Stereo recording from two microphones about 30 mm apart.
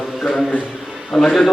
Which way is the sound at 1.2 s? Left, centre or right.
Centre.